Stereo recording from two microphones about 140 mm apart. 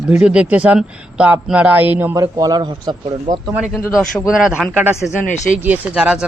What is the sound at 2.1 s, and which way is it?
Speech, 25° right (ahead or behind).